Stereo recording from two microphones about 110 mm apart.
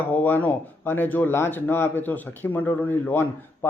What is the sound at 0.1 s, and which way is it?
Speech, 15° left (ahead or behind).